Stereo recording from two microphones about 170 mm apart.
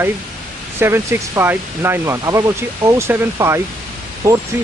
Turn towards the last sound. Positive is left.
turn(degrees=-20)  # may be behind; listen again after turning